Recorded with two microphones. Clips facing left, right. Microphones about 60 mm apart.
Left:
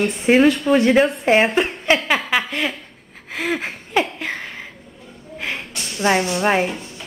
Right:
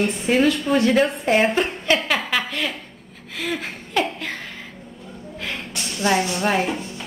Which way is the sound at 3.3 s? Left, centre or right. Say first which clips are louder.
Left 4 dB; left.